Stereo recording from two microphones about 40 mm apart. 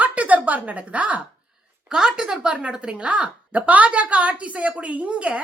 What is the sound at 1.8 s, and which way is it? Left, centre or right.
Speech, centre.